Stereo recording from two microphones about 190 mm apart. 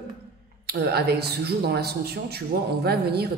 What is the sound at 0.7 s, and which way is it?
Speech, 60° right (ahead or behind).